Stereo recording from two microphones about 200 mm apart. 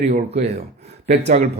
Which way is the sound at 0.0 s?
35° right (ahead or behind).